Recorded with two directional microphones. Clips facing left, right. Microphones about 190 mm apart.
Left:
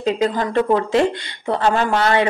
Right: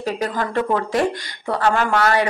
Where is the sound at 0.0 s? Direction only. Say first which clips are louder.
Left 4 dB; 20° left (ahead or behind).